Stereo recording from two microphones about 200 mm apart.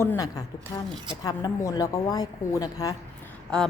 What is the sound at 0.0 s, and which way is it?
A woman's voice, 15° left (ahead or behind).